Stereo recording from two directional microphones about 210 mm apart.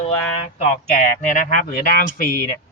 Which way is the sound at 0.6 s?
40° left (ahead or behind).